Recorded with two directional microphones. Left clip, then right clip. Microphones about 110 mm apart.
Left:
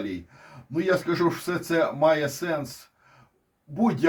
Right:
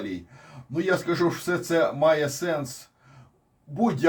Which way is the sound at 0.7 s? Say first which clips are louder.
Left 1 dB; 5° right (ahead or behind).